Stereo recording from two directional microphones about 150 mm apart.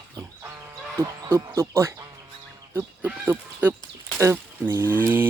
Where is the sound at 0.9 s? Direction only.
20° right (ahead or behind).